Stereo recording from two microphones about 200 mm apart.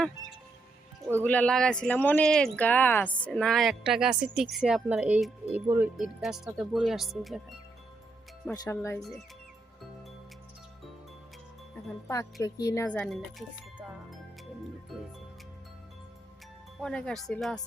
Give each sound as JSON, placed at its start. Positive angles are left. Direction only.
{"t": 1.2, "sound": "speech", "side_deg": 5}
{"t": 8.4, "sound": "speech", "side_deg": 15}
{"t": 12.0, "sound": "speech", "side_deg": 15}
{"t": 16.8, "sound": "speech", "side_deg": 5}